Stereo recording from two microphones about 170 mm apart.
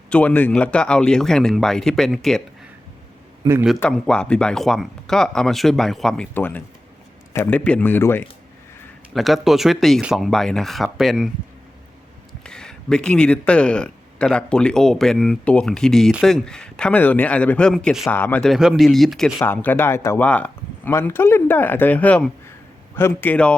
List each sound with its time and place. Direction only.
0.1 s speech: 10° left (ahead or behind)
3.4 s a man's voice: 25° right (ahead or behind)
3.8 s speech: 5° left (ahead or behind)
9.1 s speech: centre (ahead or behind)
12.4 s speech: 5° left (ahead or behind)
19.4 s speech: 10° left (ahead or behind)